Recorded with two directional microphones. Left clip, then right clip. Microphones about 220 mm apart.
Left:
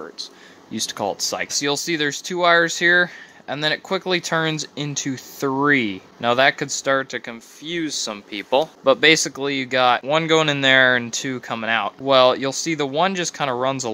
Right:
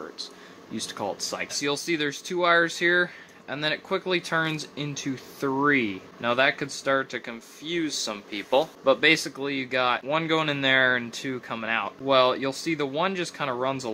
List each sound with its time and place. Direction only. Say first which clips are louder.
0.7 s speech: left 7 dB; 45° left (ahead or behind)